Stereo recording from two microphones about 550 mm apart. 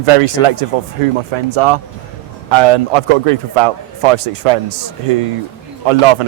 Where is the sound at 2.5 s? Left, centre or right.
Right.